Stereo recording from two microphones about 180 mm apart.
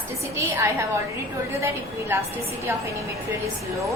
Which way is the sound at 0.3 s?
15° right (ahead or behind).